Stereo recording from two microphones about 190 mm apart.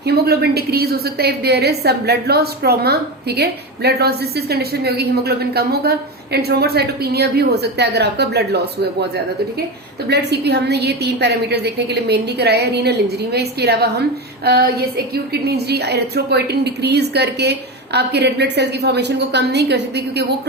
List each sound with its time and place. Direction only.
0.0 s a woman's voice: 55° right (ahead or behind)